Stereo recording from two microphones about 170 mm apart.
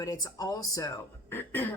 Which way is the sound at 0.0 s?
20° left (ahead or behind).